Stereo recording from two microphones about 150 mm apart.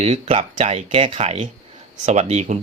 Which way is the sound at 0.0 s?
45° right (ahead or behind).